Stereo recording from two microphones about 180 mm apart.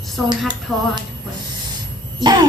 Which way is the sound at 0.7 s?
Centre (ahead or behind).